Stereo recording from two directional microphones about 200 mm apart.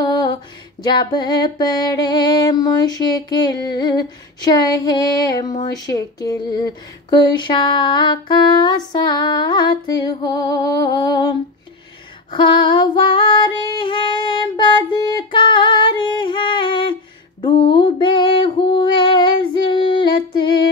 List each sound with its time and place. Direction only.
0.0 s music: 25° left (ahead or behind)
0.8 s a sound: 20° left (ahead or behind)
12.3 s female singing: 25° left (ahead or behind)